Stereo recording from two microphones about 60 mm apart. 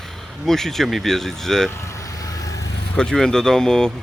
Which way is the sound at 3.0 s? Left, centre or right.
Centre.